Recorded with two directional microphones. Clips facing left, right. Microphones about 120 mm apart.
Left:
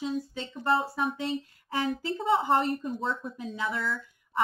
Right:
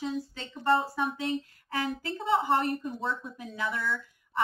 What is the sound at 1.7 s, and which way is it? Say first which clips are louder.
A woman's voice: left 3 dB; 25° left (ahead or behind).